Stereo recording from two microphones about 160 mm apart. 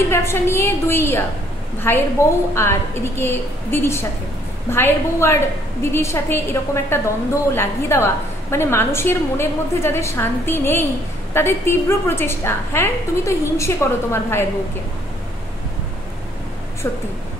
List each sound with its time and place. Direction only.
0.1 s a woman's voice: 15° left (ahead or behind)
16.8 s a woman's voice: 15° left (ahead or behind)